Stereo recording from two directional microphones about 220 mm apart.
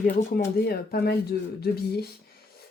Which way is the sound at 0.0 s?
40° left (ahead or behind).